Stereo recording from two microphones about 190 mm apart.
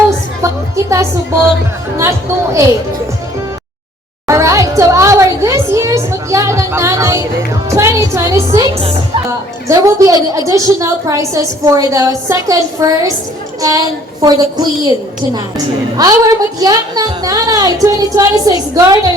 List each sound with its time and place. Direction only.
0.4 s a woman's voice: 15° right (ahead or behind)
4.3 s a sound: 15° right (ahead or behind)
7.7 s music: 15° right (ahead or behind)
8.1 s a woman's voice: 15° right (ahead or behind)